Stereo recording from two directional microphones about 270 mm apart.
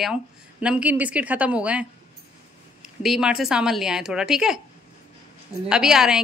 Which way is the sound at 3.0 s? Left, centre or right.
Centre.